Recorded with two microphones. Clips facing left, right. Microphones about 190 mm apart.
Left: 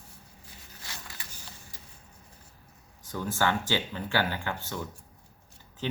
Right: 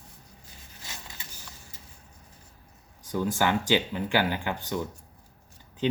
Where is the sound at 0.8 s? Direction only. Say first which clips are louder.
Right 1 dB; 20° right (ahead or behind).